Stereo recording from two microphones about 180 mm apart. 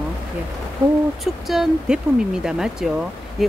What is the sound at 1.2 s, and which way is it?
Speech, centre (ahead or behind).